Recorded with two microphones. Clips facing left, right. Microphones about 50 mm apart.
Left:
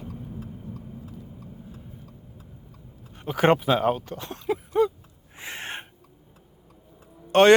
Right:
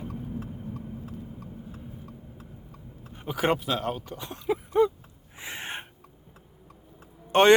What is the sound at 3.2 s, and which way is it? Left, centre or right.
Speech, centre.